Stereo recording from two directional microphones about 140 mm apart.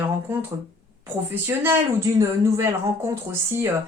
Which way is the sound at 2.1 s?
20° right (ahead or behind).